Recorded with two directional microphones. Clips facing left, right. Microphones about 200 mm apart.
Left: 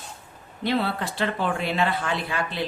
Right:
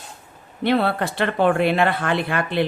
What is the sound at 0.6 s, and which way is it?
Speech, 60° right (ahead or behind).